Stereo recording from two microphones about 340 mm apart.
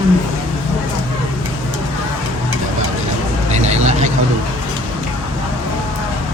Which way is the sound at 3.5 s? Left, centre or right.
Centre.